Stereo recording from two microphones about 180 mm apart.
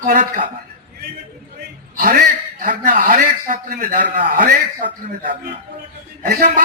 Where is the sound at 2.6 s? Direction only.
50° right (ahead or behind).